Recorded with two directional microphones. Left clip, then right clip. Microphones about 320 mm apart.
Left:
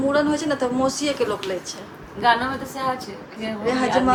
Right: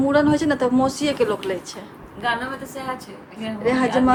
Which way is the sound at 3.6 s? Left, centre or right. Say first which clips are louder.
Right 1 dB; right.